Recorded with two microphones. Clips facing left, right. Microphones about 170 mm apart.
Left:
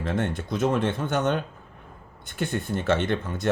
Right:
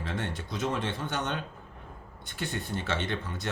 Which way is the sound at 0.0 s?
50° left (ahead or behind).